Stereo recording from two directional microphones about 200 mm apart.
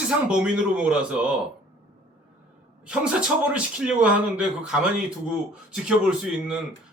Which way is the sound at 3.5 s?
5° right (ahead or behind).